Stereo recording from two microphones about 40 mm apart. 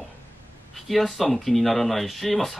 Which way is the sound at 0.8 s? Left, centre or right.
Centre.